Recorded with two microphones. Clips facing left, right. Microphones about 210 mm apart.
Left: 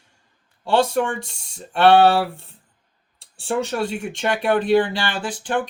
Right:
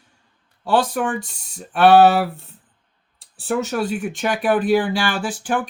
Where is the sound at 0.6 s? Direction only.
25° left (ahead or behind).